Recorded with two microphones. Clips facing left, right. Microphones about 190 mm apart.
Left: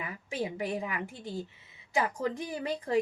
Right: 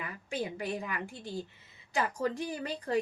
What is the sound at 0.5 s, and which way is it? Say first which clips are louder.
Speech: left 2 dB; 20° left (ahead or behind).